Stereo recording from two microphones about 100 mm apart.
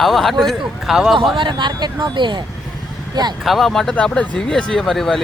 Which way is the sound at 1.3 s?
50° right (ahead or behind).